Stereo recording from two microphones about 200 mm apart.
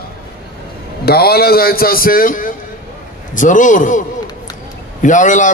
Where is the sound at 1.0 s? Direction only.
50° left (ahead or behind).